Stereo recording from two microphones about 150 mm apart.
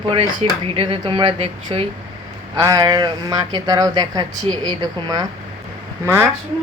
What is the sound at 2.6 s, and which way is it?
Speech, 25° right (ahead or behind).